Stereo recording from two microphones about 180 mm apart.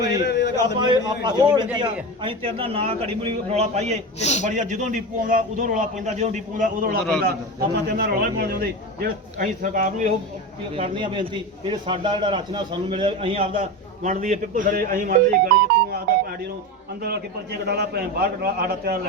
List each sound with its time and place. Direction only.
0.1 s a sound: 70° left (ahead or behind)
0.8 s a man's voice: 25° right (ahead or behind)
4.2 s speech: 40° left (ahead or behind)
4.4 s a man's voice: 45° right (ahead or behind)
7.9 s a man's voice: 60° right (ahead or behind)
10.8 s a man's voice: 30° right (ahead or behind)
13.6 s a man's voice: 45° right (ahead or behind)